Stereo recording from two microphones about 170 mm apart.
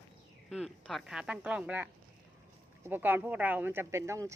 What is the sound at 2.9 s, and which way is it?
Speech, 10° right (ahead or behind).